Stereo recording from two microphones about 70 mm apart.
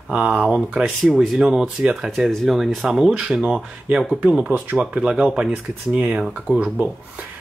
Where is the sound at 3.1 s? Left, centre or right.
Centre.